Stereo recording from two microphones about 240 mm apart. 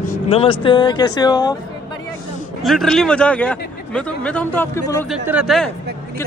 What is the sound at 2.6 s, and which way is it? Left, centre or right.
A man's voice, centre.